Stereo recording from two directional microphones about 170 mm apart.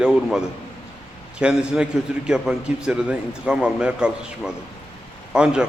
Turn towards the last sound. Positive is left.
turn(degrees=-5)  # may be behind; listen again after turning